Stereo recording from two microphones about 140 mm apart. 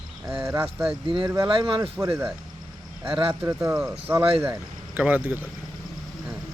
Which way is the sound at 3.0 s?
40° right (ahead or behind).